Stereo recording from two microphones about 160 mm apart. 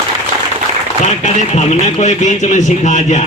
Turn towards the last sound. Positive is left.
turn(degrees=50)  # may be behind; listen again after turning